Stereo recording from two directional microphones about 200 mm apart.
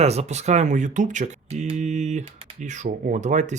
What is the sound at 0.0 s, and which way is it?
Speech, 30° right (ahead or behind).